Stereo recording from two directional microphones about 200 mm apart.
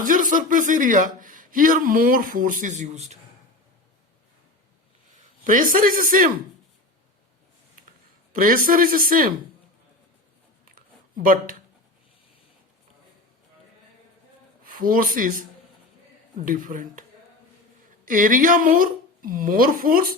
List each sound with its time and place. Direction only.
0.0 s speech: 40° right (ahead or behind)
5.5 s a woman's voice: 45° right (ahead or behind)
8.4 s a woman's voice: 45° right (ahead or behind)
10.7 s a sound: 45° right (ahead or behind)
14.6 s speech: 45° right (ahead or behind)
16.5 s a woman's voice: 40° right (ahead or behind)